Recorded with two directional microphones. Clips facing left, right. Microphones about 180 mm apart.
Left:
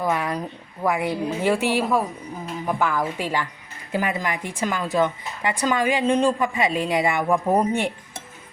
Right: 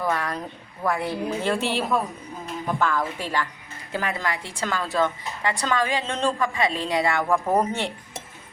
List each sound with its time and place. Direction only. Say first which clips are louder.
0.0 s a woman's voice: left 2 dB; 15° left (ahead or behind)